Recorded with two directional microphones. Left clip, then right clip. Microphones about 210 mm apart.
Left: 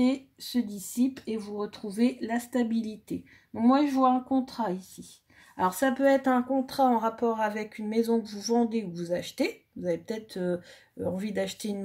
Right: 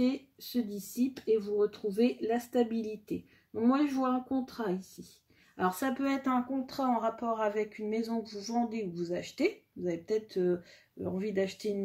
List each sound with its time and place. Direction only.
0.0 s a woman's voice: 40° left (ahead or behind)